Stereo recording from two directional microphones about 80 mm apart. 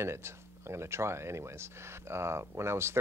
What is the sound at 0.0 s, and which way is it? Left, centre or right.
Speech, right.